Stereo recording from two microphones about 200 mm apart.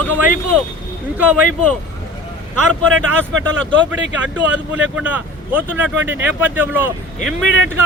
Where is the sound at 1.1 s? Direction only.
10° right (ahead or behind).